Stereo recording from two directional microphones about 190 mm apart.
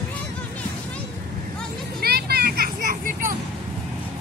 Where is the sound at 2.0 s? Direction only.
55° right (ahead or behind).